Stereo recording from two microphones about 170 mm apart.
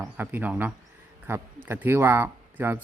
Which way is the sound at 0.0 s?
10° right (ahead or behind).